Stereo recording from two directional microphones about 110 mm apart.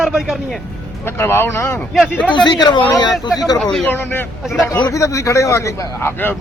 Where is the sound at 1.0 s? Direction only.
20° left (ahead or behind).